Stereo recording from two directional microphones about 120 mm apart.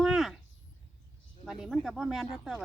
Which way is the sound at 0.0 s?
5° right (ahead or behind).